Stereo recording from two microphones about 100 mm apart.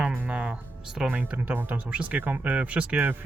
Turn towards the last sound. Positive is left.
turn(degrees=-15)  # may be behind; listen again after turning